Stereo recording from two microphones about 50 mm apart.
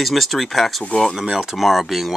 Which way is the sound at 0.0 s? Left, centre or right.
Centre.